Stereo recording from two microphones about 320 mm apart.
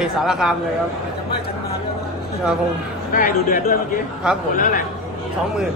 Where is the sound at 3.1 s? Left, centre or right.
Left.